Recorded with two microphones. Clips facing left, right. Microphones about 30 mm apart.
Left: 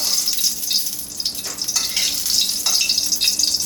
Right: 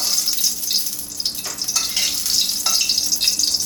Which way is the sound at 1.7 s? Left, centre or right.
Centre.